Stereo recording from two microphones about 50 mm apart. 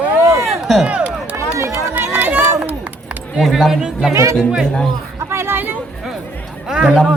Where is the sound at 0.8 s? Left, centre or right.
Right.